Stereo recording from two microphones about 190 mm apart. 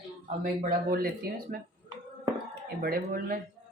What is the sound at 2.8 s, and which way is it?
Speech, 50° right (ahead or behind).